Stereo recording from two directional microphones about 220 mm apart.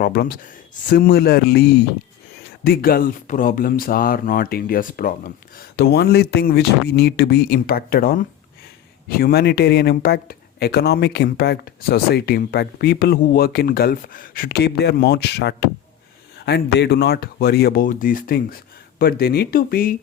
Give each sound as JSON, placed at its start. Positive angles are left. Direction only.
{"t": 0.0, "sound": "speech", "side_deg": 40}